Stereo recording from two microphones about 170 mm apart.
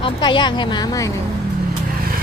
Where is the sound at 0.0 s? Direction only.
25° left (ahead or behind).